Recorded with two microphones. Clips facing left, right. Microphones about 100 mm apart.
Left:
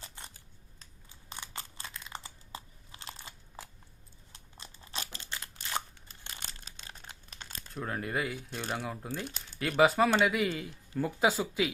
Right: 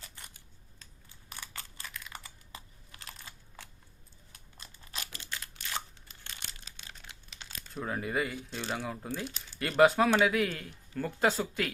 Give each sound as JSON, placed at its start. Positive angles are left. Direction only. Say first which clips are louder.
{"t": 0.0, "sound": "scissors", "louder": "left 3 dB", "side_deg": 30}
{"t": 1.1, "sound": "crumpling", "louder": "left 2 dB", "side_deg": 25}
{"t": 4.3, "sound": "scissors", "louder": "left 2 dB", "side_deg": 30}
{"t": 7.7, "sound": "speech", "louder": "right 1 dB", "side_deg": 0}